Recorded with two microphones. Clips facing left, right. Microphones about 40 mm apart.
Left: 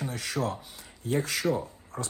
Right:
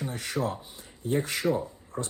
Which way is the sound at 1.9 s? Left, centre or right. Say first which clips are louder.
Right 2 dB; left.